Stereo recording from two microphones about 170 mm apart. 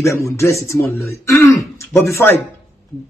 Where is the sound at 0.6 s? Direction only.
15° left (ahead or behind).